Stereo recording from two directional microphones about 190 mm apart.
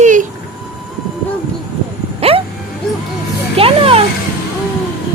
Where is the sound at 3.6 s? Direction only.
30° right (ahead or behind).